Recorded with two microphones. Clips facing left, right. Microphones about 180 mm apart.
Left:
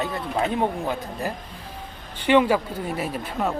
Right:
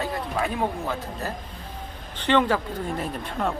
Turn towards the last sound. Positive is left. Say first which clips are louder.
# left 1 dB
turn(degrees=5)  # may be behind; listen again after turning